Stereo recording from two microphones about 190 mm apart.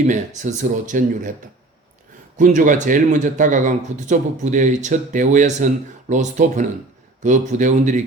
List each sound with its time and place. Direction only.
0.0 s speech: 40° right (ahead or behind)
2.4 s speech: 40° right (ahead or behind)